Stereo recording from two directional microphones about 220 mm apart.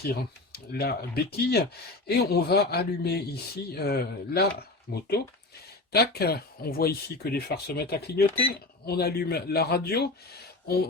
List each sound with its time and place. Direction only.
0.0 s speech: 45° left (ahead or behind)